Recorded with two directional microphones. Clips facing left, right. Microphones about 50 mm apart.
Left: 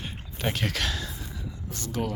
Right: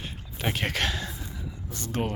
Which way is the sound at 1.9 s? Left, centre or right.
Right.